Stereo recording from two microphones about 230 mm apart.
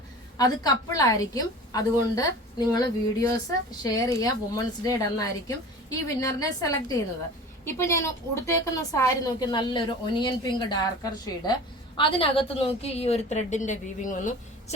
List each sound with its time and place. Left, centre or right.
0.3 s a woman's voice: centre; by 14.8 s left